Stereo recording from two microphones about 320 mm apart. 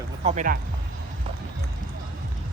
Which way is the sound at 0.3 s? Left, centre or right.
Right.